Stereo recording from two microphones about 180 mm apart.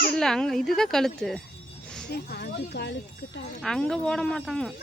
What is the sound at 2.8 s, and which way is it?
Speech, 75° left (ahead or behind).